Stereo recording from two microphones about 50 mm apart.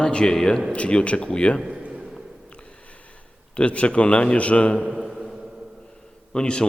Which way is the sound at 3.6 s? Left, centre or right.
Left.